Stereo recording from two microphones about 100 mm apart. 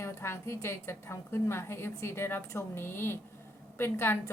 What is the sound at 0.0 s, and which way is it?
Speech, 25° left (ahead or behind).